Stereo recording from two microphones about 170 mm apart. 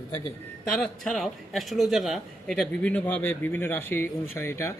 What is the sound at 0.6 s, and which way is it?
A man's voice, 5° left (ahead or behind).